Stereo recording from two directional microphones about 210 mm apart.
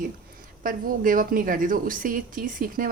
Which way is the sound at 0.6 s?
40° right (ahead or behind).